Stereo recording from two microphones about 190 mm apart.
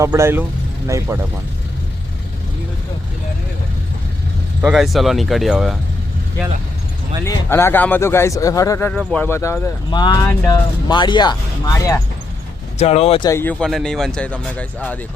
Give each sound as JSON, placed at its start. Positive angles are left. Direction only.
{"t": 0.0, "sound": "speech", "side_deg": -15}
{"t": 4.6, "sound": "speech", "side_deg": 0}
{"t": 7.3, "sound": "speech", "side_deg": 15}
{"t": 8.9, "sound": "speech", "side_deg": 5}
{"t": 12.8, "sound": "speech", "side_deg": 35}
{"t": 13.3, "sound": "speech", "side_deg": 10}